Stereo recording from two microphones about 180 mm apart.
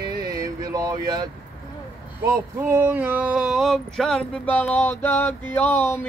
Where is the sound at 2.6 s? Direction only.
15° right (ahead or behind); by 6.0 s 10° left (ahead or behind).